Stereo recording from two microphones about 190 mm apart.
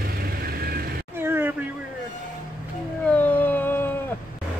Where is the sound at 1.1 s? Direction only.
10° right (ahead or behind).